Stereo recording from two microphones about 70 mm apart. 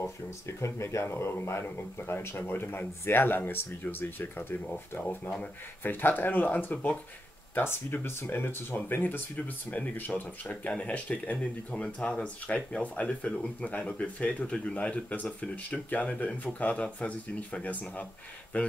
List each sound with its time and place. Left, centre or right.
0.0 s speech: left